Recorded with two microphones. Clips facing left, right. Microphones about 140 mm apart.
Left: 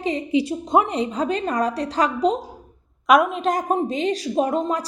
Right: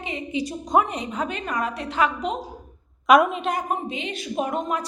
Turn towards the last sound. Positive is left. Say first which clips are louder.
# left 4 dB
turn(degrees=30)  # may be behind; listen again after turning